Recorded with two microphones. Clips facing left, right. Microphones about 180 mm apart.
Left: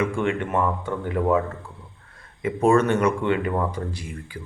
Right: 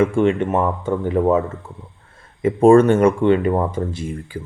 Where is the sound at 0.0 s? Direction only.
25° right (ahead or behind).